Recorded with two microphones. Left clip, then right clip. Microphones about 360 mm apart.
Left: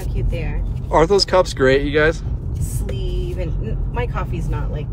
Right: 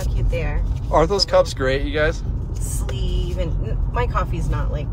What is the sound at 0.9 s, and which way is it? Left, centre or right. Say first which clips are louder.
Speech: left 2 dB; left.